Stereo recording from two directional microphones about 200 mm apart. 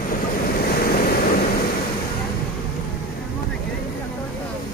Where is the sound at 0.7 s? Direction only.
50° left (ahead or behind).